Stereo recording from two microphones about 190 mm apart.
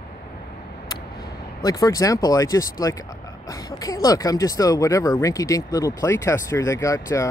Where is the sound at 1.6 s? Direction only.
20° left (ahead or behind).